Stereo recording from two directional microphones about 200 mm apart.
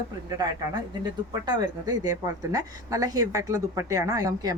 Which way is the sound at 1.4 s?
20° right (ahead or behind).